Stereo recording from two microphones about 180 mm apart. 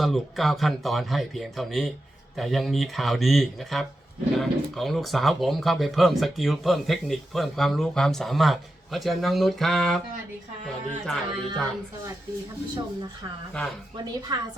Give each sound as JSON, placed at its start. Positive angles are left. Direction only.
{"t": 0.0, "sound": "speech", "side_deg": 0}
{"t": 11.0, "sound": "speech", "side_deg": 5}
{"t": 13.9, "sound": "a woman's voice", "side_deg": -20}